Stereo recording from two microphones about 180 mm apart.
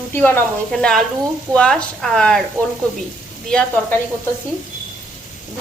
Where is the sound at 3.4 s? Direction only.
5° left (ahead or behind).